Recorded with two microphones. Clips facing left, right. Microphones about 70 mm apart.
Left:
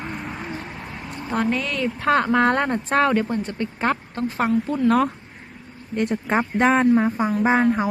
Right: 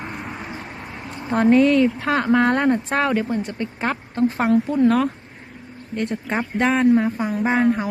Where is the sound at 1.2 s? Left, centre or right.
Centre.